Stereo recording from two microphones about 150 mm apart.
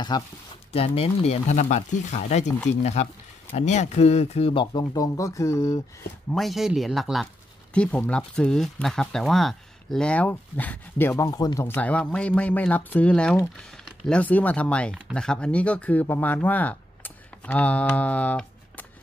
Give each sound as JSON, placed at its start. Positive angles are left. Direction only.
{"t": 0.1, "sound": "speech", "side_deg": 30}
{"t": 0.7, "sound": "speech", "side_deg": 40}
{"t": 6.3, "sound": "speech", "side_deg": 0}
{"t": 11.7, "sound": "speech", "side_deg": 10}